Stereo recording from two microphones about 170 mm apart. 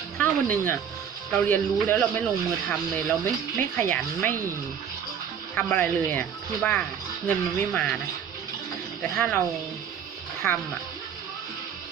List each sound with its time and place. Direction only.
0.2 s speech: 10° left (ahead or behind)
5.5 s speech: 10° left (ahead or behind)
9.0 s speech: 5° left (ahead or behind)
10.4 s speech: 5° left (ahead or behind)